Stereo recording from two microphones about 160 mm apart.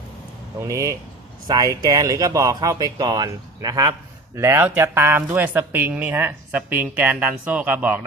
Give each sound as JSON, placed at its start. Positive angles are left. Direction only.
{"t": 0.6, "sound": "speech", "side_deg": -20}